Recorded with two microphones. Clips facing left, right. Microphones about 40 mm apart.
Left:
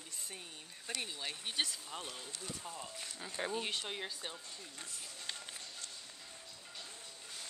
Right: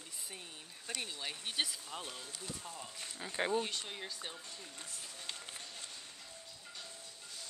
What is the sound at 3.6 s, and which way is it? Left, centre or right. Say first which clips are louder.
Speech: left 2 dB; centre.